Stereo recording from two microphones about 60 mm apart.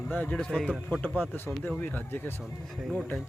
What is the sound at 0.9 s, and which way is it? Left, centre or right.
Speech, left.